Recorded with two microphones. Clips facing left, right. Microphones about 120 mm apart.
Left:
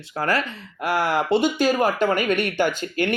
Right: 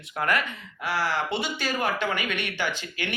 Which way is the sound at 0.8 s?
50° left (ahead or behind).